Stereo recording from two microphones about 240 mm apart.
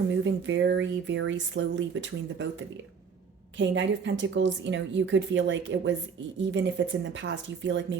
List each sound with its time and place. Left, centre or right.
0.1 s speech: right